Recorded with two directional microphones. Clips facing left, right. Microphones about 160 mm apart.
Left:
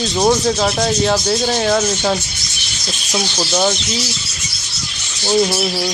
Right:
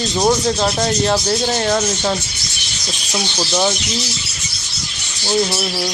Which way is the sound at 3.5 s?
Centre (ahead or behind).